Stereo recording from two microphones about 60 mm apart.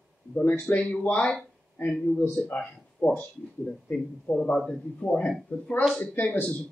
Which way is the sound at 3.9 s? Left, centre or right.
Centre.